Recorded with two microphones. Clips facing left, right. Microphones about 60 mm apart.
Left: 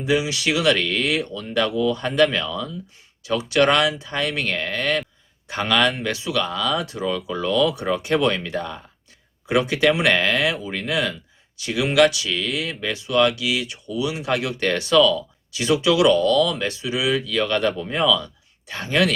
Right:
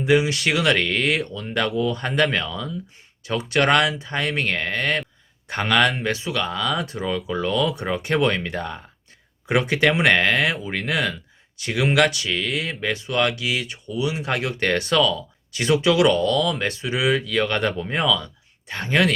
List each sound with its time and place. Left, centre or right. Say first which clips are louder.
0.0 s speech: right 2 dB; right